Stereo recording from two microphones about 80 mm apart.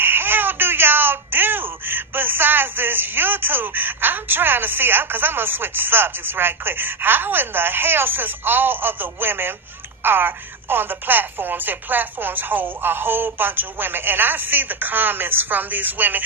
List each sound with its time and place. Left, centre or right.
0.0 s speech: right